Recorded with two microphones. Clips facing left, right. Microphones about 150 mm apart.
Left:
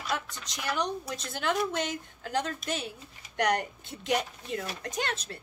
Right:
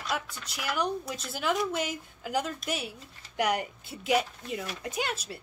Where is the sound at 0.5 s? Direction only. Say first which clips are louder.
Right 1 dB; 5° right (ahead or behind).